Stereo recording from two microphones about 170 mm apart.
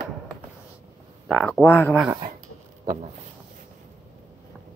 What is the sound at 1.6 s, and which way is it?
Speech, 15° left (ahead or behind).